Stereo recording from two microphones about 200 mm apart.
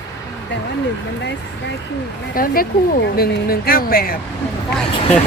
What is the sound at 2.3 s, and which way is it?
Speech, 45° left (ahead or behind).